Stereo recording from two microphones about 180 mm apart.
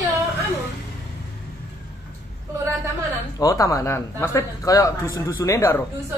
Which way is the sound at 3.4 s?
20° left (ahead or behind).